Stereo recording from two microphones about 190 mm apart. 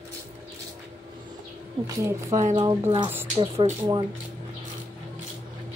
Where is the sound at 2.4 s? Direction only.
25° right (ahead or behind).